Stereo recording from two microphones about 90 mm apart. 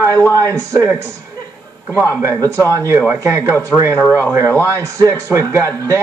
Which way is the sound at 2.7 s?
40° right (ahead or behind).